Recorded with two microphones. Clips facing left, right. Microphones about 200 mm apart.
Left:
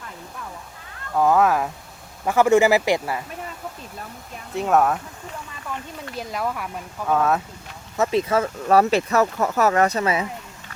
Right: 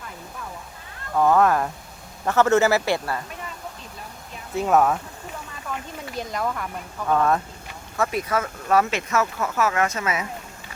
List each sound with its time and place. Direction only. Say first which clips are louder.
1.1 s speech: even; 5° left (ahead or behind)
4.5 s speech: even; centre (ahead or behind)
6.1 s speech: even; 5° left (ahead or behind)
7.9 s speech: left 4 dB; 25° left (ahead or behind)